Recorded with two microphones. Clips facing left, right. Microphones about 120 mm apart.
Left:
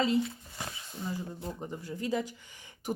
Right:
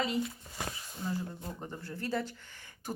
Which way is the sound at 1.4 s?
15° left (ahead or behind).